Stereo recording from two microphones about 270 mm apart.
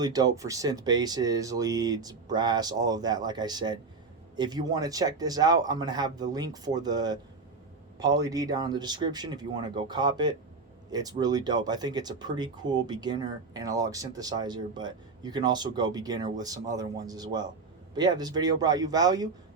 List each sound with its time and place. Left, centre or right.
0.0 s speech: centre